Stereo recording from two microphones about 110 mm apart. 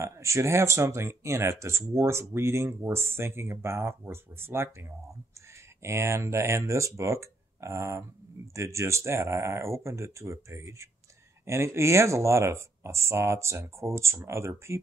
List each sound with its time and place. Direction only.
0.0 s speech: 25° right (ahead or behind)